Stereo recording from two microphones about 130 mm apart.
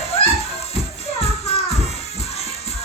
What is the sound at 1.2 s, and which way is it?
Music, 50° left (ahead or behind).